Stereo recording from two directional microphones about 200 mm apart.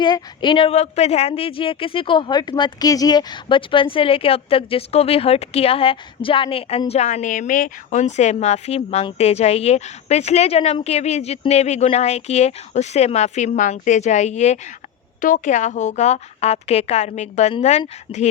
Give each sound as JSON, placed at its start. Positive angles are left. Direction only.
{"t": 0.0, "sound": "speech", "side_deg": 25}